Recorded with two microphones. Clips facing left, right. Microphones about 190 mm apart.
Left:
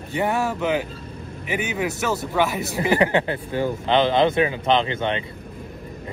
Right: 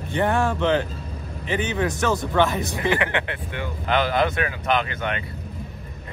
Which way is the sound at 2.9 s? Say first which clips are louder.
Left 5 dB; 35° left (ahead or behind).